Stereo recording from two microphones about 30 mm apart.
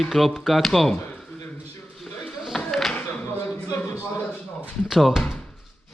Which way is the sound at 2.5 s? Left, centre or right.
Centre.